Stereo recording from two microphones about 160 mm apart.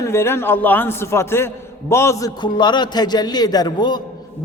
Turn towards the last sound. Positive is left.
turn(degrees=25)  # may be behind; listen again after turning